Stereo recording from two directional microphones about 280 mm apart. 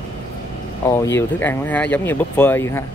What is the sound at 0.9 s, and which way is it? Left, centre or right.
Speech, centre.